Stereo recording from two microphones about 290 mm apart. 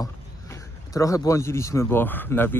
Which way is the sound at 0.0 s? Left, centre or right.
Centre.